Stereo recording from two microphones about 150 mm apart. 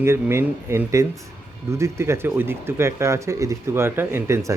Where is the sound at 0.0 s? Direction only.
15° right (ahead or behind).